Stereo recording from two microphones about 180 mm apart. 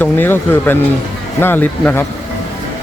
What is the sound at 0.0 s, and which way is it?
Speech, 10° left (ahead or behind).